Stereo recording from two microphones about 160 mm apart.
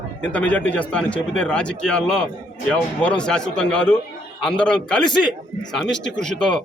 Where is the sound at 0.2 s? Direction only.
10° left (ahead or behind).